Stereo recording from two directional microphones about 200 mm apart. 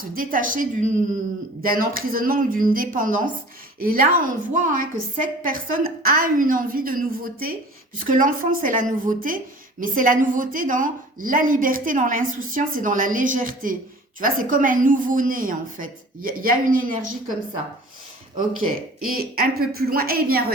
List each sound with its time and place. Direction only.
0.0 s a woman's voice: 45° right (ahead or behind)
18.6 s a woman's voice: 45° right (ahead or behind)